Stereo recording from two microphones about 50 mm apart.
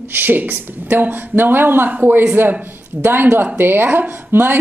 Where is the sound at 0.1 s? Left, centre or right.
Right.